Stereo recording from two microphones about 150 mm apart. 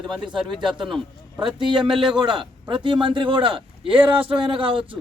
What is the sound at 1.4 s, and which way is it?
Speech, 30° right (ahead or behind).